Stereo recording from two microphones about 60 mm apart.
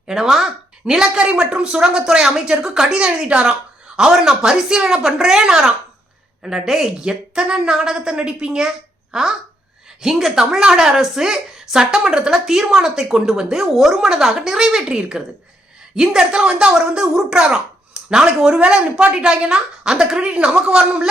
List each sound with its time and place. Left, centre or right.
0.1 s a woman's voice: centre